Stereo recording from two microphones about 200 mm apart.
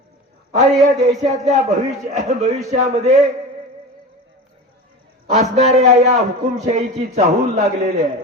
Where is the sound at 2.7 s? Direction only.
35° right (ahead or behind).